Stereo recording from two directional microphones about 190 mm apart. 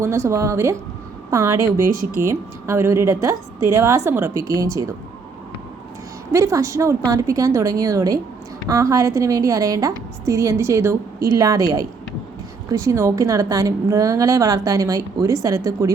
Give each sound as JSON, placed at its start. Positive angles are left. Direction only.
{"t": 0.0, "sound": "a woman's voice", "side_deg": -15}
{"t": 6.3, "sound": "a woman's voice", "side_deg": -15}